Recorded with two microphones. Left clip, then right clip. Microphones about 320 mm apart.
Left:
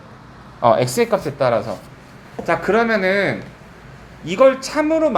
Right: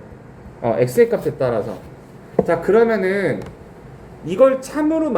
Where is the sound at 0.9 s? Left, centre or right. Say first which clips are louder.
Right 3 dB; centre.